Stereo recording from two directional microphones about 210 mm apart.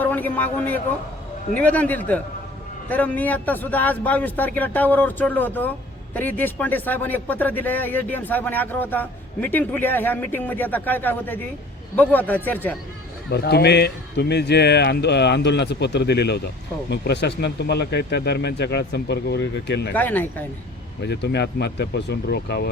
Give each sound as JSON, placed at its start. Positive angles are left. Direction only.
{"t": 0.0, "sound": "a man's voice", "side_deg": 10}
{"t": 13.3, "sound": "speech", "side_deg": 50}
{"t": 19.9, "sound": "speech", "side_deg": 10}
{"t": 21.0, "sound": "speech", "side_deg": 55}